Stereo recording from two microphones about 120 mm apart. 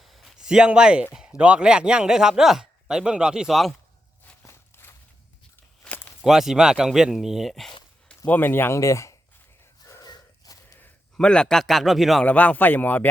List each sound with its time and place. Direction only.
0.0 s a sound: centre (ahead or behind)
1.1 s speech: 5° right (ahead or behind)
4.4 s walk: 20° left (ahead or behind)
6.2 s speech: 5° right (ahead or behind)
8.3 s speech: 15° left (ahead or behind)
9.8 s snort: 30° left (ahead or behind)
11.2 s speech: 5° left (ahead or behind)
12.2 s speech: 10° left (ahead or behind)